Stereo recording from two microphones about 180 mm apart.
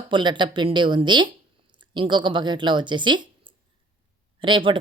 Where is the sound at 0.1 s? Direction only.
25° right (ahead or behind).